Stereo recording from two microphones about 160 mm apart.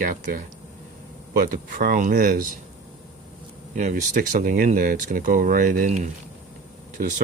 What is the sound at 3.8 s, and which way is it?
Speech, 50° right (ahead or behind).